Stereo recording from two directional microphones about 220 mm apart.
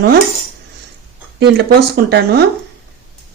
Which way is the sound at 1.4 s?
50° right (ahead or behind).